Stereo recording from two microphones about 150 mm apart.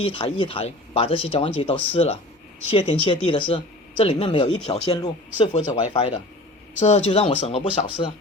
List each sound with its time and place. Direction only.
0.0 s speech: 35° left (ahead or behind)
5.5 s speech: 40° left (ahead or behind)